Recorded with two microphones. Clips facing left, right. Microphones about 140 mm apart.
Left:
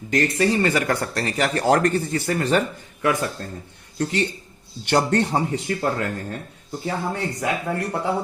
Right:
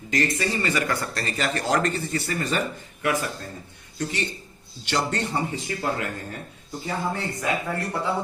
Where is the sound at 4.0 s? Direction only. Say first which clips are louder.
Left 5 dB; 65° left (ahead or behind).